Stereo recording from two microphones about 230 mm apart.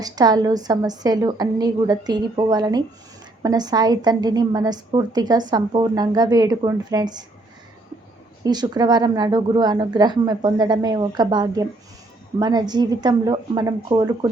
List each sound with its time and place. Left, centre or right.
0.0 s speech: centre
8.4 s speech: centre